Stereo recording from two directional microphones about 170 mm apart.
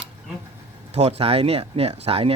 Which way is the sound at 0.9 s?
35° right (ahead or behind).